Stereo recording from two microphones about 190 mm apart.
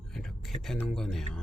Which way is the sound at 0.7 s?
Centre (ahead or behind).